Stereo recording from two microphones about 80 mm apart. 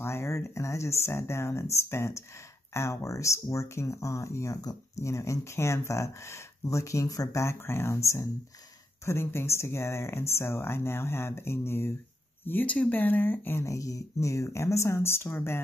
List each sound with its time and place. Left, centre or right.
0.0 s speech: left
12.4 s speech: left
13.7 s speech: left